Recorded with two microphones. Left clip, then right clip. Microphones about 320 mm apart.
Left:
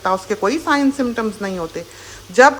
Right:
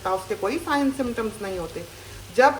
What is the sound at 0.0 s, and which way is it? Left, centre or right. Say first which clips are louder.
A woman's voice: left 7 dB; centre.